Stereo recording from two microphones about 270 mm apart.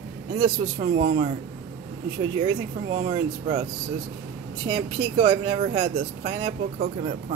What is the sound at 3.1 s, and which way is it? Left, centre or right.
Speech, centre.